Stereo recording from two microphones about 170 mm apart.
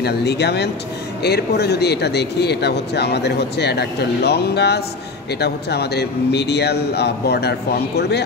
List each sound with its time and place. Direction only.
0.0 s speech: 75° left (ahead or behind)